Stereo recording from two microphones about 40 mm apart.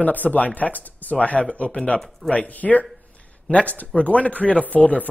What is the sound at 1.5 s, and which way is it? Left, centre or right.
Speech, left.